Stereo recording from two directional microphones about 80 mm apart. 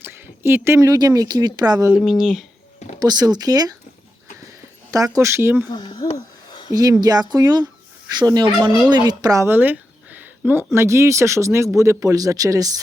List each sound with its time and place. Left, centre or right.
0.0 s a sound: right
0.9 s speech: right
2.0 s speech: centre
3.0 s speech: right
4.9 s speech: right
5.7 s speech: left
7.0 s speech: right
9.0 s speech: right
9.4 s speech: right